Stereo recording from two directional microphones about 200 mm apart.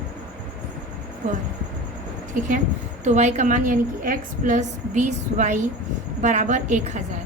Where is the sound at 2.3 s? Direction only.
40° right (ahead or behind).